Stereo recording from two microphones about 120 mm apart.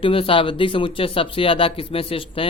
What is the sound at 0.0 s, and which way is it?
Speech, 50° left (ahead or behind).